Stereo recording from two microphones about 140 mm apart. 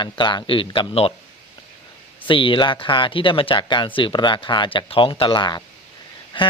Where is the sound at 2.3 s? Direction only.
35° left (ahead or behind).